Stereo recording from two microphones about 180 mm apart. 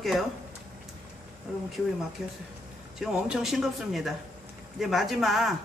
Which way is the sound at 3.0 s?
5° right (ahead or behind).